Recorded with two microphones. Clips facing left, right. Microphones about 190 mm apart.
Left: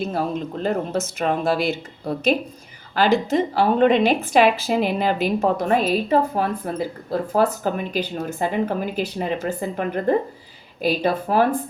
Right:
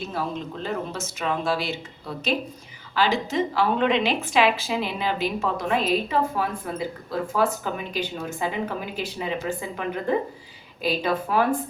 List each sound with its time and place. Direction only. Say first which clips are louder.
0.0 s a woman's voice: left 5 dB; 45° left (ahead or behind)